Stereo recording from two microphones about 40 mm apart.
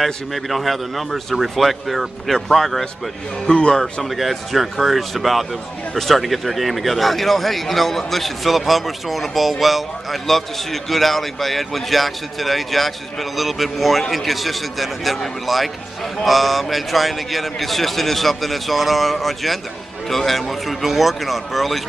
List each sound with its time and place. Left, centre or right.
0.0 s speech: centre
3.4 s a man's voice: left
3.8 s speech: centre